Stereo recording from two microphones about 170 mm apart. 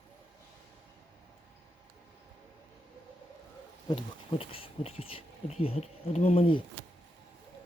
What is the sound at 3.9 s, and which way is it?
Speech, 30° left (ahead or behind).